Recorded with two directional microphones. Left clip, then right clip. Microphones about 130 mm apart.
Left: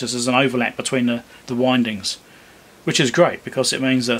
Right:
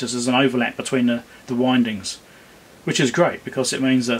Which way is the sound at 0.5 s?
35° left (ahead or behind).